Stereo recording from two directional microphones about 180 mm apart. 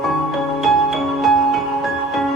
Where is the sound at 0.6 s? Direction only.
Centre (ahead or behind).